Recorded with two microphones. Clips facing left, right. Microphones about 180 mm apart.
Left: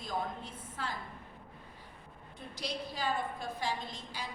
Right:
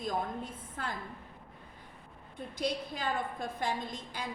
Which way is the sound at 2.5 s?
55° right (ahead or behind).